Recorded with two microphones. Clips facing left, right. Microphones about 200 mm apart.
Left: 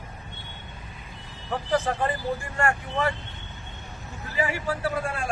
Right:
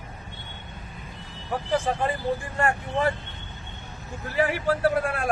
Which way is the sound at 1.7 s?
15° right (ahead or behind).